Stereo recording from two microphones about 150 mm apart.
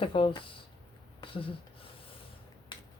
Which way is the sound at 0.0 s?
35° left (ahead or behind).